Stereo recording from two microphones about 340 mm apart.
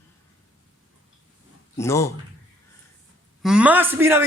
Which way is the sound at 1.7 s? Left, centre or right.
Centre.